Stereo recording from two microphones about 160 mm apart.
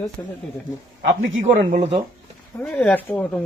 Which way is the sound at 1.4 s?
45° right (ahead or behind).